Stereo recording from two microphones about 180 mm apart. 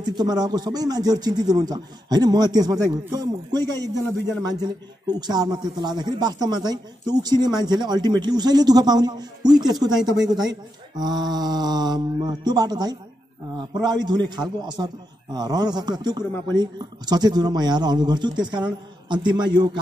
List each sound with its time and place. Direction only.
0.0 s speech: 25° right (ahead or behind)
5.2 s speech: 20° right (ahead or behind)